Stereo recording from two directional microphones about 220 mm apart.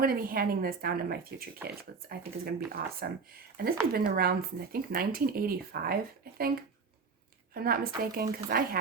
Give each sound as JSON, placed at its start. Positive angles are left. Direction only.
{"t": 0.0, "sound": "speech", "side_deg": -40}